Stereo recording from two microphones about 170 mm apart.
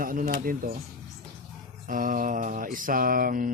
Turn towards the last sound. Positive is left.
turn(degrees=-55)  # may be behind; listen again after turning